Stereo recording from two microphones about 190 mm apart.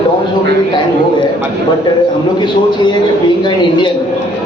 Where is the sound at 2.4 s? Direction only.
25° left (ahead or behind).